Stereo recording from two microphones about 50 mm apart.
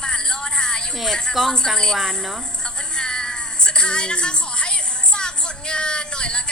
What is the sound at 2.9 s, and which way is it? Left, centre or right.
Music, centre.